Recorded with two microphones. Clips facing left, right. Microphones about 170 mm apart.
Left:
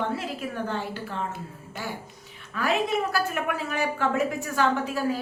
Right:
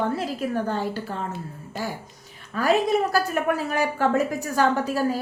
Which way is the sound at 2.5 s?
40° right (ahead or behind).